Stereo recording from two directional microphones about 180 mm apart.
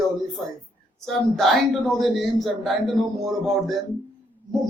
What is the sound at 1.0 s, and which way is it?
A man's voice, centre (ahead or behind).